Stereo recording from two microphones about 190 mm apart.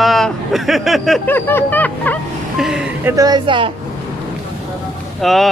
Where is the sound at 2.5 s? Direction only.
5° right (ahead or behind); by 3.7 s 25° right (ahead or behind).